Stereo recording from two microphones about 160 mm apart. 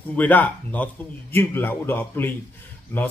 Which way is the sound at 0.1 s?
10° left (ahead or behind).